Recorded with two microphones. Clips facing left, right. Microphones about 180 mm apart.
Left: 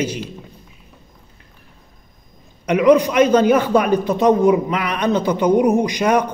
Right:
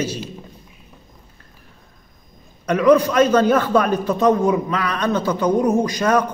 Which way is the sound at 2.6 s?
15° left (ahead or behind).